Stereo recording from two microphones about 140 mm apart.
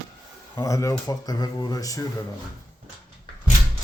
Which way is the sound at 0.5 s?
25° left (ahead or behind).